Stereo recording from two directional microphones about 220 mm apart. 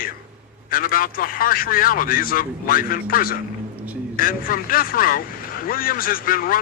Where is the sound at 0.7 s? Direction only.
40° left (ahead or behind).